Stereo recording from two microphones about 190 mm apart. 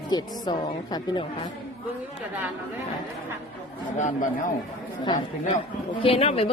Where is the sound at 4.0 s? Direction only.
40° left (ahead or behind).